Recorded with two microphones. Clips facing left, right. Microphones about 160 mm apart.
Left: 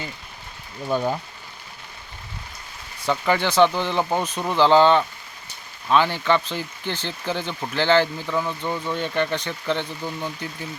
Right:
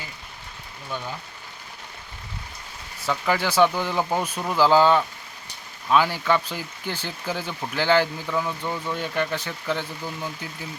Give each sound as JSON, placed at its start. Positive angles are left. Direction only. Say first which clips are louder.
{"t": 0.9, "sound": "speech", "louder": "left 10 dB", "side_deg": 45}
{"t": 3.0, "sound": "speech", "louder": "left 2 dB", "side_deg": -5}